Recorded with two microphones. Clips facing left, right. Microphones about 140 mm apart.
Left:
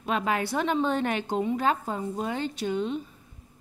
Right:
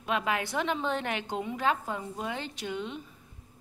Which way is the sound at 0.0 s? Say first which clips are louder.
Left 3 dB; 40° left (ahead or behind).